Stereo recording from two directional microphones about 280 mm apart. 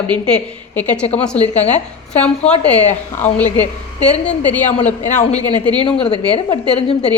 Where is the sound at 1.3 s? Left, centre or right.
Left.